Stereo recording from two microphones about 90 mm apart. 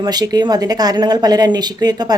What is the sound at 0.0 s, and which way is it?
Speech, 50° right (ahead or behind).